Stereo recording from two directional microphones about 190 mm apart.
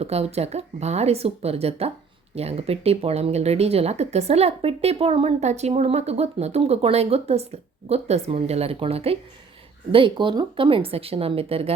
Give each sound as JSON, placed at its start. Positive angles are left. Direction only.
{"t": 0.0, "sound": "speech", "side_deg": -35}